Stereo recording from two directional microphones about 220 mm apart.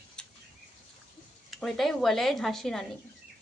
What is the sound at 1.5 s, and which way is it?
A woman's voice, centre (ahead or behind).